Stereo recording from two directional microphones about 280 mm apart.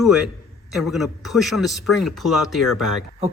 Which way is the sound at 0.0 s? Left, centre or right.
Centre.